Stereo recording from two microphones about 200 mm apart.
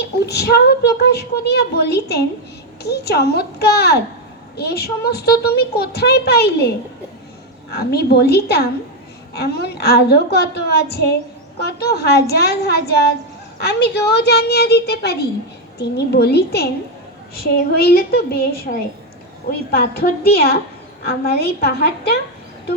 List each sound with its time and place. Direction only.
0.0 s a woman's voice: 55° left (ahead or behind)
7.7 s a woman's voice: 55° left (ahead or behind)